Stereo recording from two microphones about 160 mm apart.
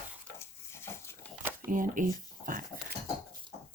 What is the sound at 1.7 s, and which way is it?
Speech, 55° right (ahead or behind).